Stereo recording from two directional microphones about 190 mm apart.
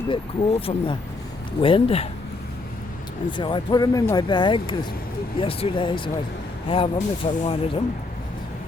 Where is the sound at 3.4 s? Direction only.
25° left (ahead or behind).